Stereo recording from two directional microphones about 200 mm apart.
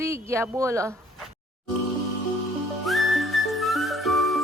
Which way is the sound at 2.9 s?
Centre (ahead or behind).